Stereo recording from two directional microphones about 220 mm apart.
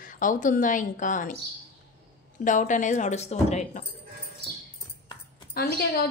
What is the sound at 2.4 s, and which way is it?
Speech, 35° left (ahead or behind).